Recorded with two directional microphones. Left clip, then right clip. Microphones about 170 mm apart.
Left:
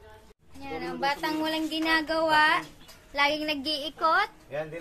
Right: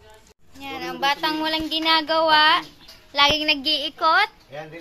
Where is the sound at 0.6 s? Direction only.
20° right (ahead or behind).